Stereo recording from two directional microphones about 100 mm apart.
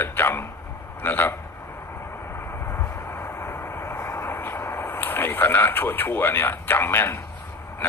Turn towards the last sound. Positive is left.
turn(degrees=20)  # may be behind; listen again after turning